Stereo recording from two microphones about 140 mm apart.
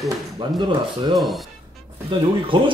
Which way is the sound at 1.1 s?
Centre (ahead or behind).